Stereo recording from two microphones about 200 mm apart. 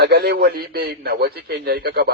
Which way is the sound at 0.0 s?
55° right (ahead or behind).